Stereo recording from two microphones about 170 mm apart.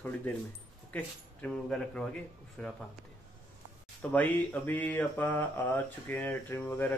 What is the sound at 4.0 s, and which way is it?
Speech, 10° left (ahead or behind).